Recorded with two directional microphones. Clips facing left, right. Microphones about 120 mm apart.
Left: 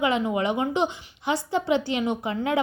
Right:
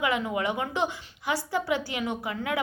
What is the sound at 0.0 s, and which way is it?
A woman's voice, 25° left (ahead or behind).